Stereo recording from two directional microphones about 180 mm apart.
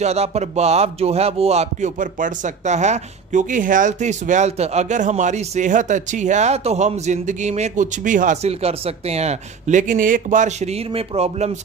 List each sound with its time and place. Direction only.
0.0 s speech: 35° right (ahead or behind)